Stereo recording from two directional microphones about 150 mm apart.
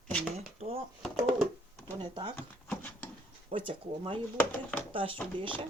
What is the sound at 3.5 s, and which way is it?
Speech, 35° right (ahead or behind).